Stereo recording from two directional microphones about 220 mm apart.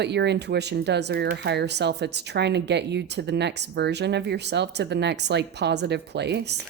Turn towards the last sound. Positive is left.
turn(degrees=-50)  # may be behind; listen again after turning